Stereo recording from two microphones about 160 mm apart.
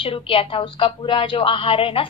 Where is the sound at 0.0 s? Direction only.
35° left (ahead or behind).